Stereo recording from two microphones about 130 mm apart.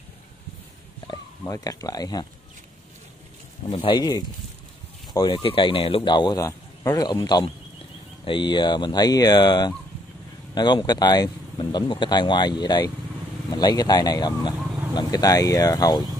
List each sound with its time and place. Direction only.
1.0 s speech: 25° left (ahead or behind)
3.6 s speech: 40° left (ahead or behind)
5.2 s speech: 40° left (ahead or behind)